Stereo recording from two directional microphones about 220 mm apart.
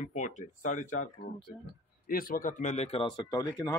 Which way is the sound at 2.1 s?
40° left (ahead or behind).